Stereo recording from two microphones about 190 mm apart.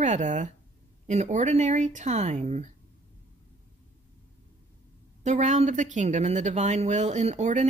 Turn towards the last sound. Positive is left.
turn(degrees=-40)  # may be behind; listen again after turning